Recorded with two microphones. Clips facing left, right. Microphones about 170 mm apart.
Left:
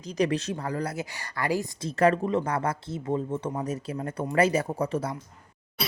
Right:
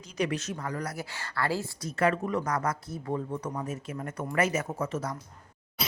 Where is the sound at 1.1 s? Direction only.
15° left (ahead or behind).